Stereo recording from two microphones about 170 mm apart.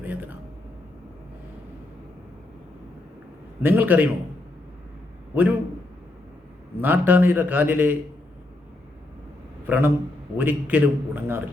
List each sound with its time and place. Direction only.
0.0 s a sound: 10° right (ahead or behind)
3.6 s a man's voice: 10° right (ahead or behind)
5.3 s a man's voice: 10° right (ahead or behind)
6.8 s a man's voice: 10° right (ahead or behind)
9.6 s a man's voice: 10° right (ahead or behind)